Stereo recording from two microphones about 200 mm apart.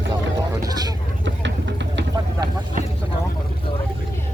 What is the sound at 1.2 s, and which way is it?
Vehicle, 65° right (ahead or behind).